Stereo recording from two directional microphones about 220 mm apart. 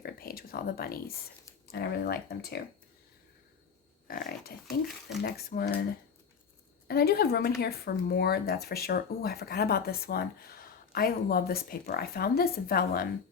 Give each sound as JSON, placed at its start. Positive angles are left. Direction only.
{"t": 0.0, "sound": "a sound", "side_deg": 45}
{"t": 1.6, "sound": "speech", "side_deg": 45}
{"t": 4.1, "sound": "speech", "side_deg": 45}
{"t": 6.8, "sound": "speech", "side_deg": 45}